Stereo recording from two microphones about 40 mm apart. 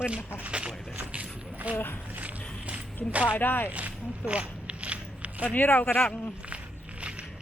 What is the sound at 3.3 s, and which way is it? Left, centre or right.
Speech, left.